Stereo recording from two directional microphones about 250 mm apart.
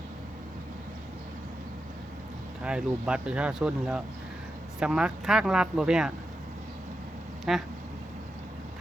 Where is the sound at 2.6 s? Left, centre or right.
Centre.